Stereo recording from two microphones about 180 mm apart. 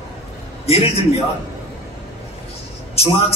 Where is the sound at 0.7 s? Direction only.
35° left (ahead or behind).